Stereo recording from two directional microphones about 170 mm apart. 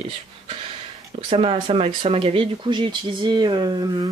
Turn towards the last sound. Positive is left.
turn(degrees=-25)  # may be behind; listen again after turning